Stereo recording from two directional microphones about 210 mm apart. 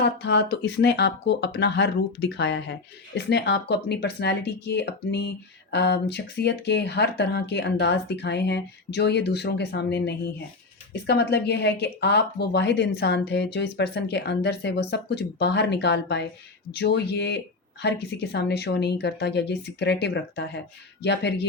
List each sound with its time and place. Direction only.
0.0 s speech: 55° left (ahead or behind)